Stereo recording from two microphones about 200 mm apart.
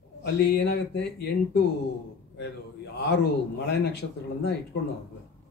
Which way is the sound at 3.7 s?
55° left (ahead or behind).